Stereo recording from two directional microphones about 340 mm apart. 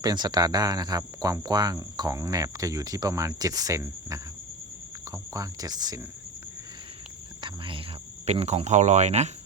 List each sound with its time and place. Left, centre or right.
0.0 s cricket: centre
7.4 s cricket: centre
8.3 s speech: centre